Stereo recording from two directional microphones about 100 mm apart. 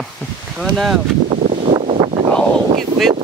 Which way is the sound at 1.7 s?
65° right (ahead or behind).